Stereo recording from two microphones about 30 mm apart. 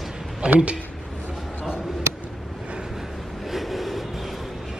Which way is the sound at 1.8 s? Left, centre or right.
Centre.